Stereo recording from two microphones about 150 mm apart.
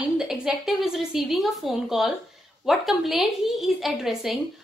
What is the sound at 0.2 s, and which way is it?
A woman's voice, 5° right (ahead or behind).